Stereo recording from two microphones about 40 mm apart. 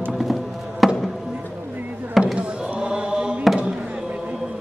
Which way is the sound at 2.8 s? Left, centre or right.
Right.